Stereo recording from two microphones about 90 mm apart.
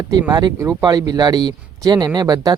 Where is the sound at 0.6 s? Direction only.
35° right (ahead or behind).